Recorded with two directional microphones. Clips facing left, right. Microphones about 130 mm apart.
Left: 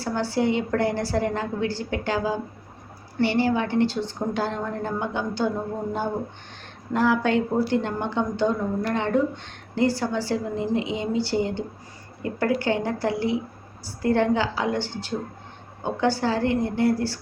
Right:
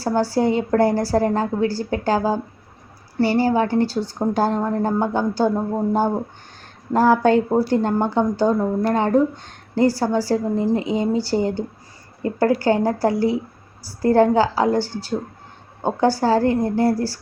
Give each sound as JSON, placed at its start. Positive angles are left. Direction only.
{"t": 0.0, "sound": "speech", "side_deg": -40}
{"t": 6.9, "sound": "speech", "side_deg": -40}